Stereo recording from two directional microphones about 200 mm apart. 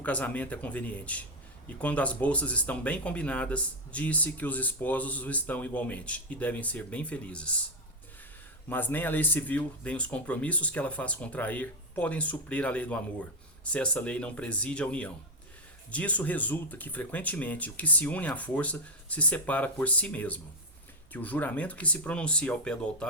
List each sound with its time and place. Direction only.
0.0 s speech: 5° left (ahead or behind)
8.7 s speech: 10° left (ahead or behind)